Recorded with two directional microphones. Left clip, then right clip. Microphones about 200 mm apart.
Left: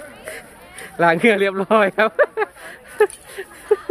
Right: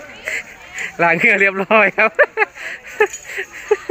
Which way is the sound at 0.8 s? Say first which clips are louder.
Right 2 dB; 5° left (ahead or behind).